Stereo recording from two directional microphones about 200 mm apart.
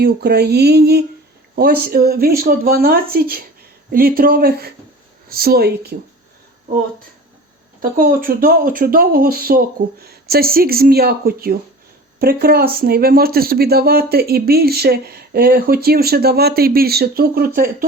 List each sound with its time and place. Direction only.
0.0 s speech: 55° right (ahead or behind)
7.8 s speech: 45° right (ahead or behind)